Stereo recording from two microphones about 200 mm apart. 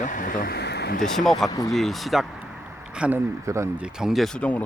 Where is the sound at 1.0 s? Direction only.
Centre (ahead or behind).